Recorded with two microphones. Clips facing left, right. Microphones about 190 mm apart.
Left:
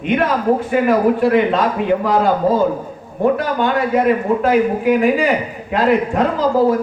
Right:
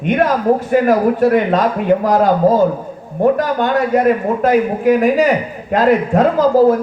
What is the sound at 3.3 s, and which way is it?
A man's voice, 45° right (ahead or behind).